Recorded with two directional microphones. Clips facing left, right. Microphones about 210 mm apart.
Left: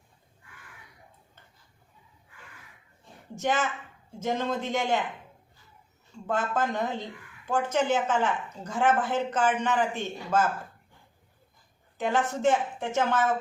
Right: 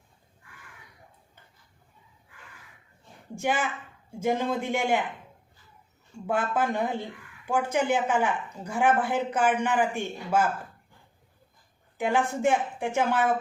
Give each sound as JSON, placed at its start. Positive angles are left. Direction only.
{"t": 3.3, "sound": "speech", "side_deg": -10}
{"t": 6.2, "sound": "speech", "side_deg": -10}
{"t": 11.9, "sound": "speech", "side_deg": -10}